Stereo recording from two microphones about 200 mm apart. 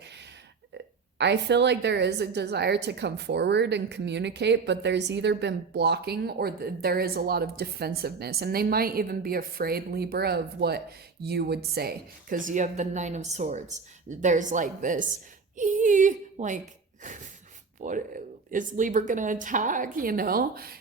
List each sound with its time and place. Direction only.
1.2 s a woman's voice: 60° right (ahead or behind); by 16.6 s 40° right (ahead or behind)
17.8 s speech: 40° right (ahead or behind)